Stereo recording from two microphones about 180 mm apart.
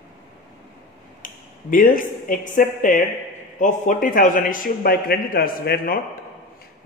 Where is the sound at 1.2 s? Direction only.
50° left (ahead or behind).